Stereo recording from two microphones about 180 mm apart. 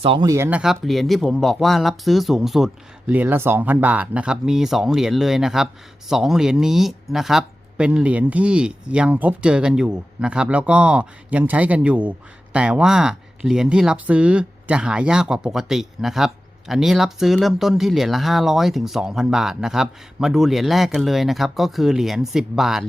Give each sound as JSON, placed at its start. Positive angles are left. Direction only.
{"t": 0.0, "sound": "speech", "side_deg": -25}
{"t": 0.3, "sound": "speech", "side_deg": -15}
{"t": 0.6, "sound": "speech", "side_deg": 0}